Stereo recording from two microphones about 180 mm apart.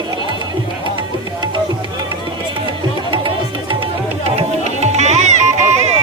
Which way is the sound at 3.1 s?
30° right (ahead or behind).